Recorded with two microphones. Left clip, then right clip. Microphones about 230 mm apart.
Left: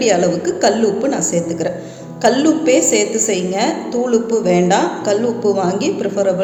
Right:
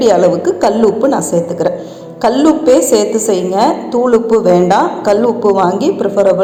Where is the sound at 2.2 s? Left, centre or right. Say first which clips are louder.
Right 4 dB; centre.